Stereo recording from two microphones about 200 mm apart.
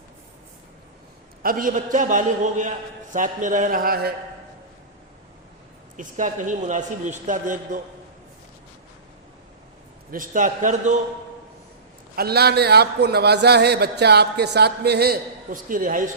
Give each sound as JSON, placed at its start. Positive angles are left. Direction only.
{"t": 1.4, "sound": "a man's voice", "side_deg": -45}
{"t": 6.0, "sound": "a man's voice", "side_deg": -40}
{"t": 10.1, "sound": "a man's voice", "side_deg": -40}
{"t": 12.1, "sound": "a man's voice", "side_deg": -50}